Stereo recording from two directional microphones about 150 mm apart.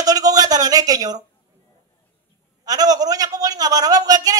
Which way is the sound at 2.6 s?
25° right (ahead or behind).